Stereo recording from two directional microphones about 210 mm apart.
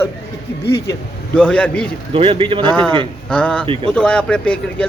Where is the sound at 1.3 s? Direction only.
5° left (ahead or behind).